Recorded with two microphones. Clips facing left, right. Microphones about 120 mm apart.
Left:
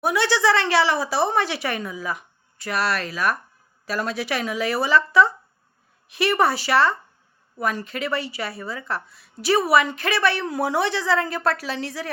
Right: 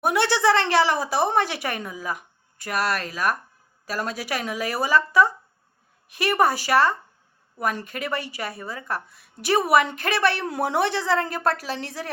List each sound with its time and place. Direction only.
0.0 s a woman's voice: 55° right (ahead or behind)